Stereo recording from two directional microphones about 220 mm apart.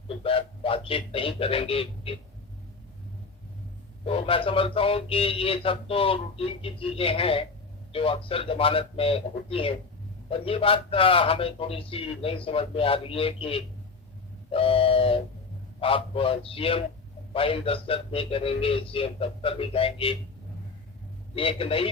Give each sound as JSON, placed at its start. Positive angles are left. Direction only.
{"t": 0.2, "sound": "speech", "side_deg": 25}
{"t": 4.0, "sound": "speech", "side_deg": 25}
{"t": 21.3, "sound": "speech", "side_deg": 25}